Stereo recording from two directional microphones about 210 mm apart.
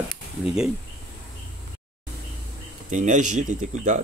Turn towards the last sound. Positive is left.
turn(degrees=-35)  # may be behind; listen again after turning